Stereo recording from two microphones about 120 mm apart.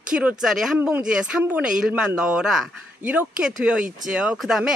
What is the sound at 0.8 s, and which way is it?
Speech, 15° right (ahead or behind).